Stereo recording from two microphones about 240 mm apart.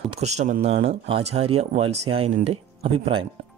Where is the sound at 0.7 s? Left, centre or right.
Right.